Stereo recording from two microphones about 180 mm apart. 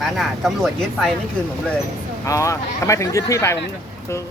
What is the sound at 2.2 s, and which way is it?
Speech, 15° left (ahead or behind).